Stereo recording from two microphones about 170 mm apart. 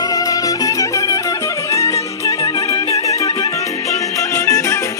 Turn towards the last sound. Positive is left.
turn(degrees=20)  # may be behind; listen again after turning